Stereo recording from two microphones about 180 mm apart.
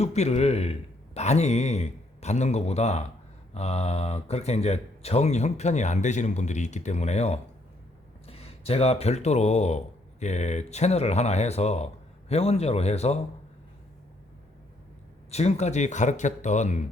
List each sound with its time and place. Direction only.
0.0 s a man's voice: 35° left (ahead or behind)
15.3 s speech: 35° left (ahead or behind)